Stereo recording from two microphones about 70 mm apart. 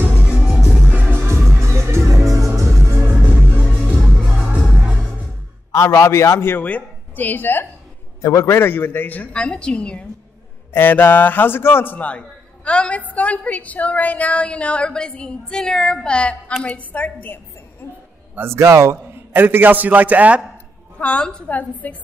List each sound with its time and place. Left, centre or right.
0.3 s music: centre
1.2 s music: right
3.1 s music: right
5.7 s a man's voice: left
6.6 s speech: left
8.2 s a man's voice: left
8.5 s a man's voice: left; by 10.0 s centre
10.7 s a man's voice: left
17.8 s a man's voice: left
18.3 s a man's voice: right
19.3 s a man's voice: right
21.0 s a man's voice: centre